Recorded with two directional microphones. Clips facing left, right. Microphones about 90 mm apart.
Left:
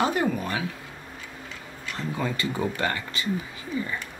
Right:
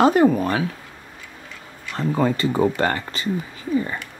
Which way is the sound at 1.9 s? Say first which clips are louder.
Right 9 dB; 45° right (ahead or behind).